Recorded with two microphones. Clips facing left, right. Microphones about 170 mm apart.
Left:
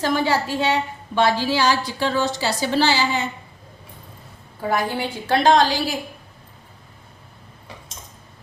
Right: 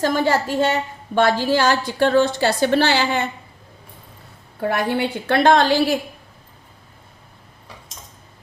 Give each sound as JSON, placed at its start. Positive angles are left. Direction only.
{"t": 0.0, "sound": "a woman's voice", "side_deg": -45}
{"t": 4.7, "sound": "a woman's voice", "side_deg": -65}